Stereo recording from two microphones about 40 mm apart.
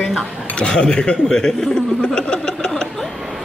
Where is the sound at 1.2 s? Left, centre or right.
Centre.